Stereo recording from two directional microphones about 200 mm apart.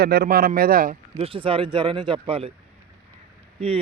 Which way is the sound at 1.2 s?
25° right (ahead or behind).